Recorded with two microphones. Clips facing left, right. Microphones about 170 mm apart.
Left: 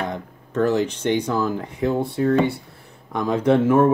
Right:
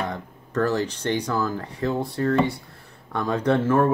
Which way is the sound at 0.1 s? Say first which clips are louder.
Left 1 dB; 15° left (ahead or behind).